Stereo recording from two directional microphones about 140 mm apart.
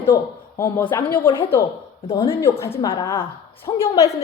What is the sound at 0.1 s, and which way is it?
A woman's voice, 25° left (ahead or behind).